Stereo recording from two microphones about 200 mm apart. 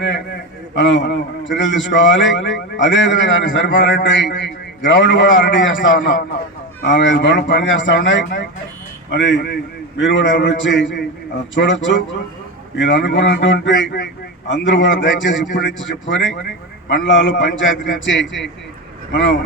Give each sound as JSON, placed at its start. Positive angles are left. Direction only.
{"t": 0.8, "sound": "a man's voice", "side_deg": 65}
{"t": 6.8, "sound": "a man's voice", "side_deg": 65}